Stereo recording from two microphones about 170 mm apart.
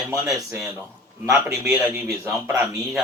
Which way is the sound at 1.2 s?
15° right (ahead or behind).